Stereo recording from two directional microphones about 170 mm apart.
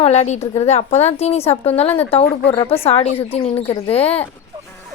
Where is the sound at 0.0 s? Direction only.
40° left (ahead or behind).